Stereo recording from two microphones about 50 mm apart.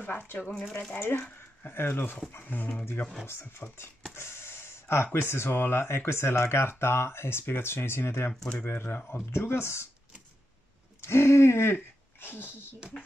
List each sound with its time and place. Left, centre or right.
0.0 s speech: left
1.6 s speech: left
3.3 s speech: left
9.1 s speech: left
11.0 s speech: left